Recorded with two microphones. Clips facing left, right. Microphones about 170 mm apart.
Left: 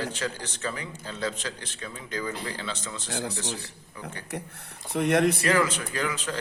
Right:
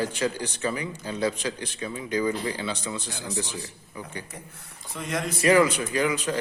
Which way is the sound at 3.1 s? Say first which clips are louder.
Left 1 dB; 65° left (ahead or behind).